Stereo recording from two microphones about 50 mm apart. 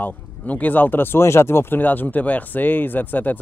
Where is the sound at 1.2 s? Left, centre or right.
Left.